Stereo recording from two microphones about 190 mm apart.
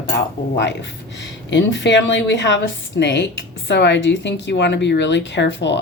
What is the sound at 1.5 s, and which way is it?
A woman's voice, 70° left (ahead or behind).